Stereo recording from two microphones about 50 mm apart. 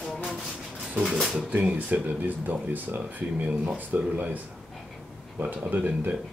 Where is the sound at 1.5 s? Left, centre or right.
Right.